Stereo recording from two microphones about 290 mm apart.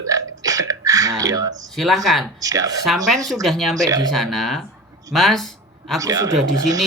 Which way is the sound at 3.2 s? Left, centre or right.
Centre.